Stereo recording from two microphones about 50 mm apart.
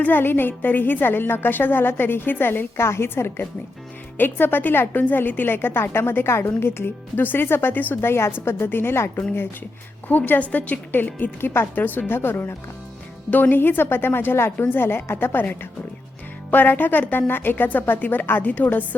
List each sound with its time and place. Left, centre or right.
0.0 s a woman's voice: left
10.1 s a woman's voice: left
11.3 s a woman's voice: left
16.5 s a woman's voice: left